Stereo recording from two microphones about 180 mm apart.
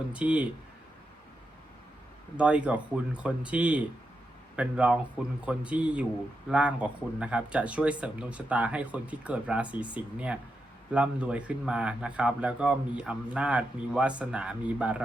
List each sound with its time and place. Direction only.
0.1 s speech: 5° right (ahead or behind)
2.3 s speech: 5° right (ahead or behind)